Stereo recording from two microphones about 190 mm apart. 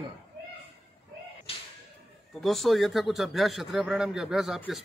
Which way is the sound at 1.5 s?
30° left (ahead or behind).